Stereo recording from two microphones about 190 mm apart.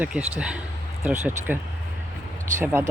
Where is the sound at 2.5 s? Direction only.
10° right (ahead or behind).